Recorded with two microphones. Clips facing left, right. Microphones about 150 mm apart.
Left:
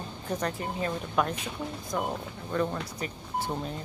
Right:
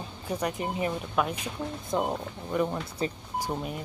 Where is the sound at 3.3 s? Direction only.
10° right (ahead or behind).